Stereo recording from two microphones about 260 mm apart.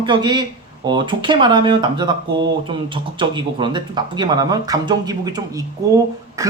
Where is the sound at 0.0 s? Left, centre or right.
Centre.